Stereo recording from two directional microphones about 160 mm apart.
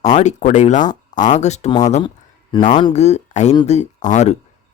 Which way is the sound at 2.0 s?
30° left (ahead or behind).